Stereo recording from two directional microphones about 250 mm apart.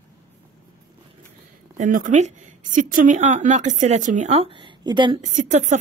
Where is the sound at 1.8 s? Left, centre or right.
Right.